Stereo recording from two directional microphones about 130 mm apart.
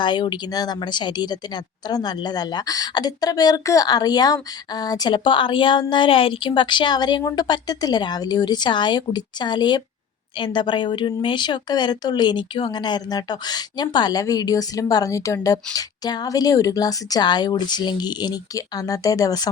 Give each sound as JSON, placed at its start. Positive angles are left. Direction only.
{"t": 0.0, "sound": "a woman's voice", "side_deg": 35}